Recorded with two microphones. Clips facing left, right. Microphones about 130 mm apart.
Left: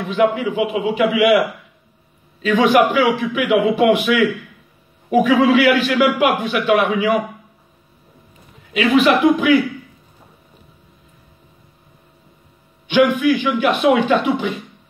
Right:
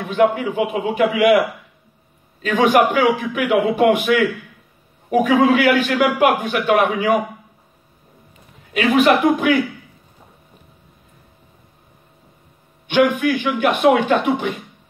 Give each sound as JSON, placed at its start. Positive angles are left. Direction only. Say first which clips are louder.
{"t": 0.0, "sound": "a man's voice", "louder": "even", "side_deg": -50}
{"t": 2.6, "sound": "a man's voice", "louder": "even", "side_deg": -45}
{"t": 8.7, "sound": "a man's voice", "louder": "even", "side_deg": -50}
{"t": 13.1, "sound": "a man's voice", "louder": "left 3 dB", "side_deg": -50}